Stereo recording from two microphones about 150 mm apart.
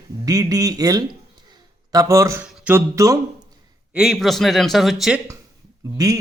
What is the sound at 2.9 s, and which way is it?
Speech, 20° right (ahead or behind).